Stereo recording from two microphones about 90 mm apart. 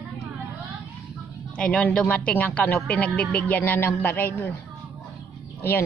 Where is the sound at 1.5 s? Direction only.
10° left (ahead or behind).